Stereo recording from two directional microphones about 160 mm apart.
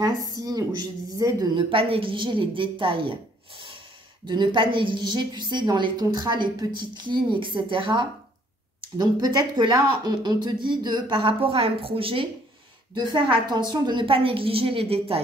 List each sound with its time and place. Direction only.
0.4 s a woman's voice: 25° right (ahead or behind)
1.7 s a woman's voice: 35° right (ahead or behind)